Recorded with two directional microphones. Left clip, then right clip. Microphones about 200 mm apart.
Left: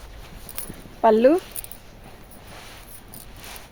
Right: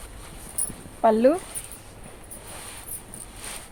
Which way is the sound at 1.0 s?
50° left (ahead or behind).